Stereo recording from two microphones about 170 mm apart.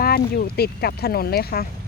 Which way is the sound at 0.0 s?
60° left (ahead or behind).